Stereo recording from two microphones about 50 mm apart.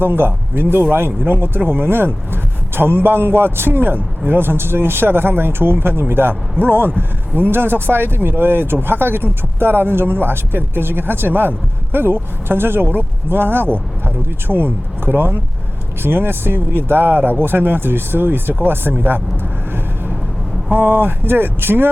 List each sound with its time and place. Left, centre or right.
0.0 s speech: right
20.7 s speech: right